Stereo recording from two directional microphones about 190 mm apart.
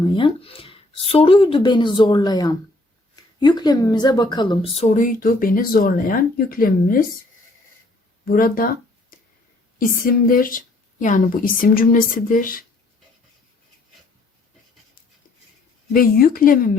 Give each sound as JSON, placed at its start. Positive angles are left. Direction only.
{"t": 0.0, "sound": "speech", "side_deg": 25}
{"t": 8.2, "sound": "a sound", "side_deg": 50}
{"t": 9.7, "sound": "speech", "side_deg": 50}
{"t": 15.9, "sound": "speech", "side_deg": 50}